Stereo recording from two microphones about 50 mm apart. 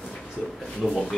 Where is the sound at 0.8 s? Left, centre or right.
Centre.